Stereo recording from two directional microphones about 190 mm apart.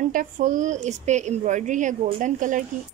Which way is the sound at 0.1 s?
45° right (ahead or behind).